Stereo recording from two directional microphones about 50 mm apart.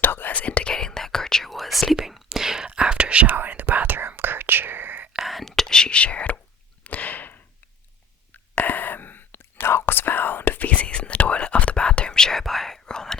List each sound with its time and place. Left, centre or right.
0.0 s whispering: left; by 1.5 s centre
1.5 s whispering: centre; by 3.2 s right
3.2 s whispering: right
5.1 s whispering: centre; by 6.4 s left
6.8 s a sound: left
8.3 s whispering: left; by 13.1 s centre